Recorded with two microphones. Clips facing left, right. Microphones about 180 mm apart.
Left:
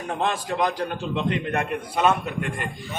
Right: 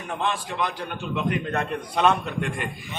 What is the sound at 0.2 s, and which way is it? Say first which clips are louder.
A man's voice: left 3 dB; 40° left (ahead or behind).